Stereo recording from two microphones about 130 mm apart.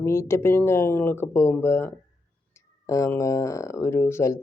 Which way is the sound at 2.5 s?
20° left (ahead or behind).